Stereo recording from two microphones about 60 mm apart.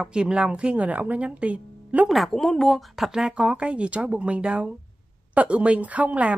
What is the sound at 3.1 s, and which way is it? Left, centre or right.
A woman's voice, centre.